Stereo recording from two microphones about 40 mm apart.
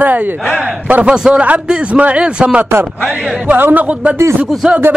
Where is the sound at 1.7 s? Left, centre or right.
Right.